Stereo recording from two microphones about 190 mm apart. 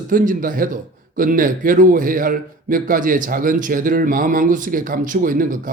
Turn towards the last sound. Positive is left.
turn(degrees=-45)  # may be behind; listen again after turning